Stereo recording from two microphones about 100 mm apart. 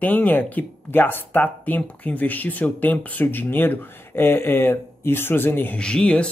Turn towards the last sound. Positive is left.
turn(degrees=10)  # may be behind; listen again after turning